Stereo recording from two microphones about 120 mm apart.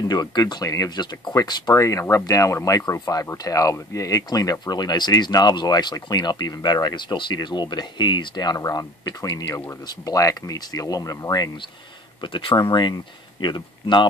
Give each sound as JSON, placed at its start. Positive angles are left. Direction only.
{"t": 0.1, "sound": "speech", "side_deg": 35}